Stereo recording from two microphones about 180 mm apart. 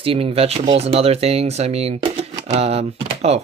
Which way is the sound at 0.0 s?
30° right (ahead or behind).